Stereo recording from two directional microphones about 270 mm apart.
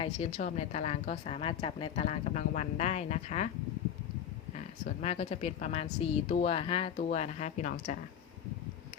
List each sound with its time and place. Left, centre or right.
0.3 s a woman's voice: left
4.5 s a woman's voice: left